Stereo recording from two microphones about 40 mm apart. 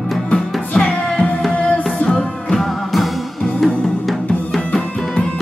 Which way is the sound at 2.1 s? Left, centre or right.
Centre.